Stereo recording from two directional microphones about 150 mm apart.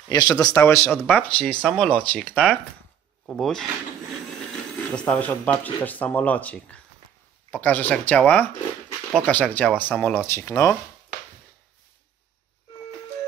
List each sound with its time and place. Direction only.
0.1 s speech: 25° left (ahead or behind); by 3.6 s 5° left (ahead or behind)
4.9 s speech: 10° left (ahead or behind)